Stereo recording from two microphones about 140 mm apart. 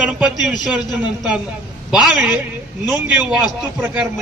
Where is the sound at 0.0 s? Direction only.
10° right (ahead or behind).